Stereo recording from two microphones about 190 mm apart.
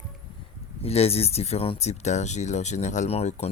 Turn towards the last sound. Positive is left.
turn(degrees=35)  # may be behind; listen again after turning